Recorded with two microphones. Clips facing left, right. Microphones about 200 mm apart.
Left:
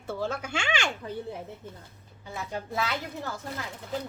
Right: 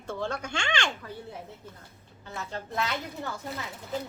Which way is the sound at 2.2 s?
10° left (ahead or behind).